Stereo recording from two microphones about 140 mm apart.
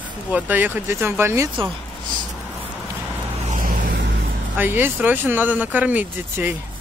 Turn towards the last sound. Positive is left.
turn(degrees=-10)  # may be behind; listen again after turning